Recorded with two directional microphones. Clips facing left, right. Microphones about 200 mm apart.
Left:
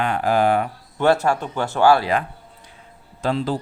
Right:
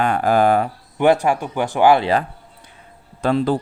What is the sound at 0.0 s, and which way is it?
Speech, 45° right (ahead or behind).